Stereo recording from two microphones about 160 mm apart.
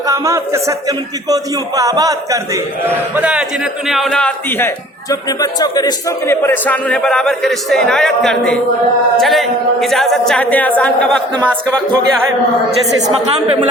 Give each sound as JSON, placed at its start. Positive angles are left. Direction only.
{"t": 0.1, "sound": "a man's voice", "side_deg": -20}
{"t": 3.2, "sound": "a man's voice", "side_deg": -5}